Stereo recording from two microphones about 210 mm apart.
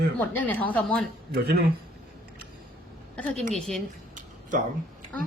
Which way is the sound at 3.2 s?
5° left (ahead or behind).